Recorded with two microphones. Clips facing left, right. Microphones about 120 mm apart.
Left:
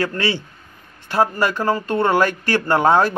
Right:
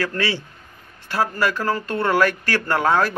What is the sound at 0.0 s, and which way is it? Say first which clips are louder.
Speech: left 2 dB; 25° left (ahead or behind).